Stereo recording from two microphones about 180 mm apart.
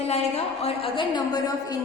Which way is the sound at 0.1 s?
35° left (ahead or behind).